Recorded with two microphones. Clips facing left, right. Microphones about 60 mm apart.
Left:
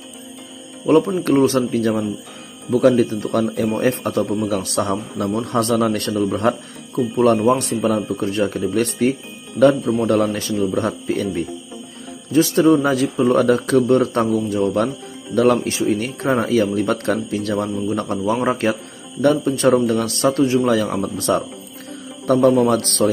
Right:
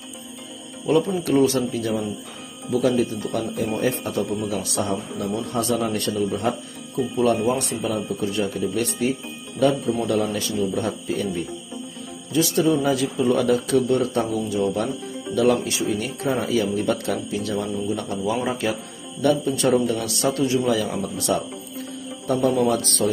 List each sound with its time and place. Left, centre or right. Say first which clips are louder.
1.0 s speech: left 3 dB; left
1.6 s speech: left 5 dB; left
3.7 s a man's voice: left 2 dB; left
8.1 s a man's voice: left 4 dB; left
10.3 s speech: left 4 dB; left
12.3 s speech: left 6 dB; left
15.3 s a man's voice: left 4 dB; left
15.8 s speech: left 4 dB; left
17.8 s speech: left 4 dB; left
20.7 s speech: left 5 dB; left
22.2 s speech: left 6 dB; left